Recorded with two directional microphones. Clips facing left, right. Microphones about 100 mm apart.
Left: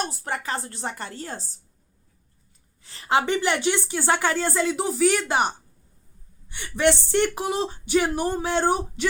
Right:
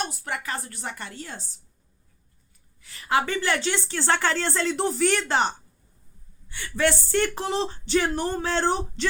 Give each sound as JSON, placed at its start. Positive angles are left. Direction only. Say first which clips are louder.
{"t": 0.0, "sound": "a woman's voice", "louder": "left 2 dB", "side_deg": 35}
{"t": 2.8, "sound": "a woman's voice", "louder": "left 2 dB", "side_deg": 30}